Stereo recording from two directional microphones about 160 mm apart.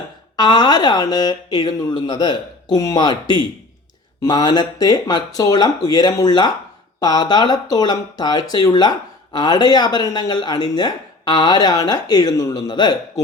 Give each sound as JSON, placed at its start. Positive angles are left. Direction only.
{"t": 0.3, "sound": "speech", "side_deg": 25}